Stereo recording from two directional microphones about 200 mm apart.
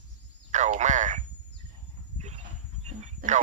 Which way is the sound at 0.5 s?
35° right (ahead or behind).